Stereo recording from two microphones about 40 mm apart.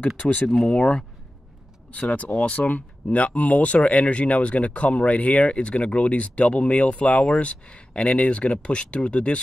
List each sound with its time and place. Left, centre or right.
0.0 s speech: left
0.7 s speech: left